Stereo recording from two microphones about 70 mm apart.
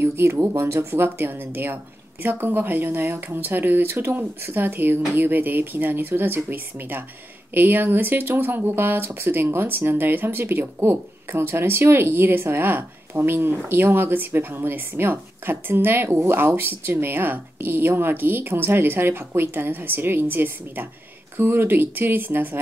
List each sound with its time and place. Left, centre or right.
0.0 s speech: right